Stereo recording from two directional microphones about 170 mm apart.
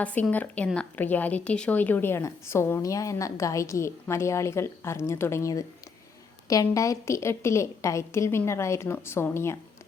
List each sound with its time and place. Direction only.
0.0 s speech: 10° left (ahead or behind)